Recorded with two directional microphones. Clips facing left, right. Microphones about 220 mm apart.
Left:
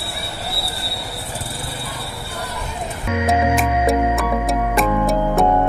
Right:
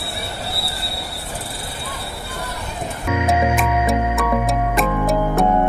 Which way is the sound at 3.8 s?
Centre (ahead or behind).